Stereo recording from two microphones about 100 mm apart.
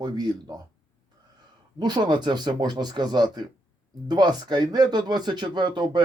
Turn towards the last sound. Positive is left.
turn(degrees=-50)  # may be behind; listen again after turning